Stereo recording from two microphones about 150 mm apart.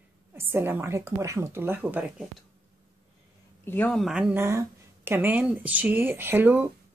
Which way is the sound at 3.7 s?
10° left (ahead or behind).